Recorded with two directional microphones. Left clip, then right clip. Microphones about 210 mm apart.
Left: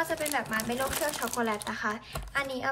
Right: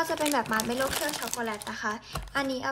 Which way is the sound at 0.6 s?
5° right (ahead or behind).